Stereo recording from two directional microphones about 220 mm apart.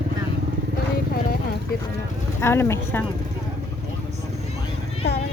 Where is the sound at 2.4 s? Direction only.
10° left (ahead or behind).